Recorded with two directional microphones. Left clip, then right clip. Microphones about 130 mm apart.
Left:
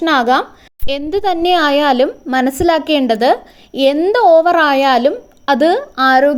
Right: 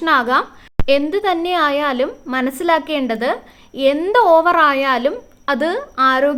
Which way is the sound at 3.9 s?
25° left (ahead or behind).